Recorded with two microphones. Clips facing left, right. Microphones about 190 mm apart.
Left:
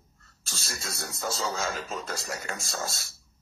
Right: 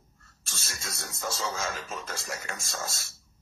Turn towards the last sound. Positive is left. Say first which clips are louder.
# left 2 dB
turn(degrees=30)  # may be behind; listen again after turning